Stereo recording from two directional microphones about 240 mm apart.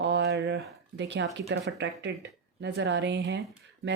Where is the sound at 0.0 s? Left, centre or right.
Right.